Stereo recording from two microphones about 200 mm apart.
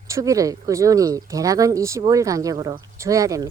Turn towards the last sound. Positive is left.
turn(degrees=-15)  # may be behind; listen again after turning